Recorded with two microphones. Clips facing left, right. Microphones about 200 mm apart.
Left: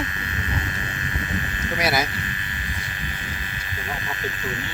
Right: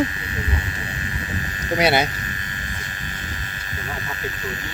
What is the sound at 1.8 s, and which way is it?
Speech, 30° right (ahead or behind).